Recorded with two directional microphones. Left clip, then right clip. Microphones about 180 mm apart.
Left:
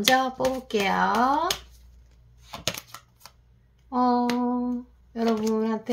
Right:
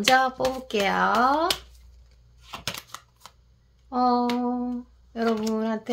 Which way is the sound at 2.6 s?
5° left (ahead or behind).